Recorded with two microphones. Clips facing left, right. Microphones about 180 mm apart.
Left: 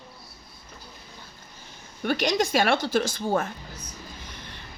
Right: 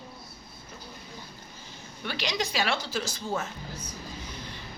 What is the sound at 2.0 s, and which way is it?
A woman's voice, 50° left (ahead or behind).